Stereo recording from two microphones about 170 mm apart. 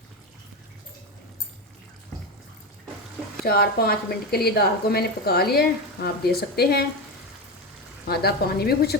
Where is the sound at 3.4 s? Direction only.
65° left (ahead or behind).